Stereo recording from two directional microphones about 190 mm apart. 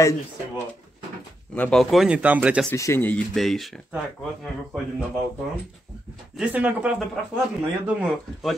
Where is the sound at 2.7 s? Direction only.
15° left (ahead or behind).